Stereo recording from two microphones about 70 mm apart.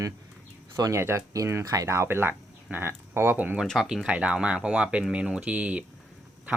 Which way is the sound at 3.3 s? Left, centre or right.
Right.